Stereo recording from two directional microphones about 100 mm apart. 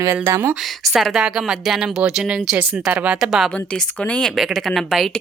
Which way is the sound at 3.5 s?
10° left (ahead or behind).